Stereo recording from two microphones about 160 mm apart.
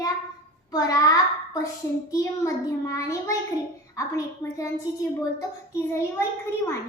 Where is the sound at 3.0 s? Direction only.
20° left (ahead or behind).